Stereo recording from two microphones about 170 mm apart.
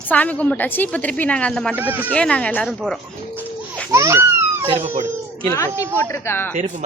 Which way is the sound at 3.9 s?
15° right (ahead or behind).